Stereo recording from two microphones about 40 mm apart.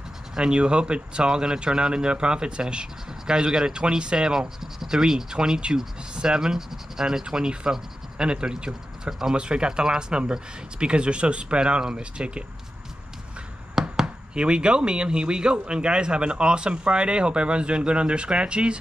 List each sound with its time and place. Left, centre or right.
0.4 s speech: right
14.0 s speech: right